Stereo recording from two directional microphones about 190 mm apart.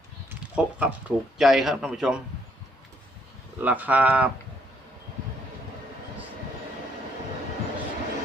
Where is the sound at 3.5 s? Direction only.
10° right (ahead or behind).